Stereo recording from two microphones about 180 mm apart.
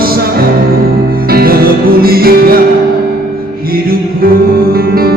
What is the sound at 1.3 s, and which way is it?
Music, 55° right (ahead or behind).